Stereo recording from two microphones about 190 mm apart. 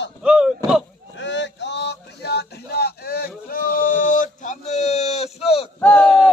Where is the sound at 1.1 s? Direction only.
70° left (ahead or behind).